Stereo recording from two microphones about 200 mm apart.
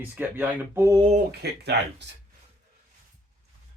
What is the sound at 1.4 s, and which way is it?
Speech, 55° right (ahead or behind).